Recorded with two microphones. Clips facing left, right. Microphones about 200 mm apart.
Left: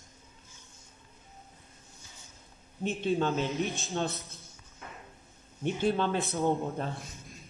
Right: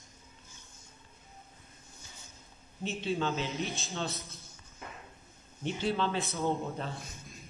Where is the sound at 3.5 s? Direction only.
15° left (ahead or behind).